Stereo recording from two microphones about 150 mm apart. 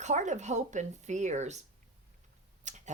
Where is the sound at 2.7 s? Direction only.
50° right (ahead or behind).